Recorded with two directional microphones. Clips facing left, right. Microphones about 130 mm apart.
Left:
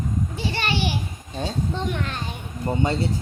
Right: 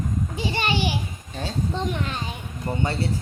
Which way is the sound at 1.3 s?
15° left (ahead or behind).